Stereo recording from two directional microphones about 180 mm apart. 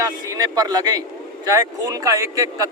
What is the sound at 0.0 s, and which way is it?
Speech, 20° right (ahead or behind).